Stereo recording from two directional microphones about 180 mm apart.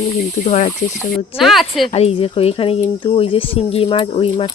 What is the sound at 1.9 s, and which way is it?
Speech, 35° left (ahead or behind).